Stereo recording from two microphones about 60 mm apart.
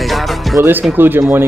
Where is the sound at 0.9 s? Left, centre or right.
Right.